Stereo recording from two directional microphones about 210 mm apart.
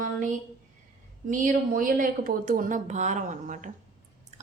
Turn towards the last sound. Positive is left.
turn(degrees=-30)  # may be behind; listen again after turning